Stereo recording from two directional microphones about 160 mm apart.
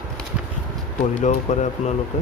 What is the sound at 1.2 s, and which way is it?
Speech, 50° left (ahead or behind).